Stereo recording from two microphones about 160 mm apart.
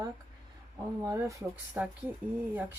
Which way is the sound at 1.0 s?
20° right (ahead or behind).